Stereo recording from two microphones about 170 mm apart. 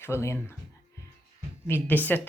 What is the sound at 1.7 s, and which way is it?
Speech, 10° left (ahead or behind).